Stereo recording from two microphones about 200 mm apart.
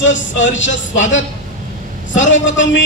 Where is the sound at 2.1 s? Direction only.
70° left (ahead or behind).